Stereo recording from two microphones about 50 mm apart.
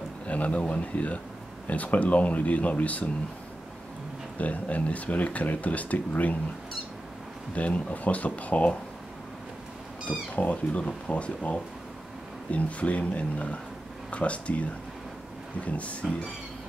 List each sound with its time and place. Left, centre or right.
0.3 s speech: left
4.4 s speech: left
7.5 s speech: left
10.3 s speech: left
10.8 s speech: left